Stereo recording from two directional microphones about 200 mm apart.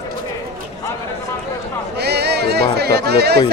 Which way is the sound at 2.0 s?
55° right (ahead or behind).